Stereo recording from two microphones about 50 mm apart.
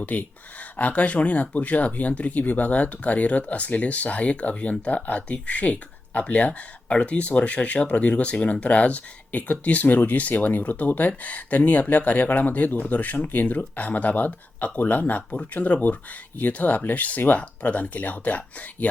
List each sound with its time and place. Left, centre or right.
0.0 s speech: left